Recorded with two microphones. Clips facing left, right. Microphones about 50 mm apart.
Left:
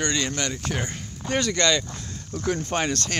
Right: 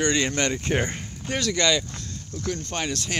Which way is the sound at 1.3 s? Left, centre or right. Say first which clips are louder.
Left 2 dB; centre.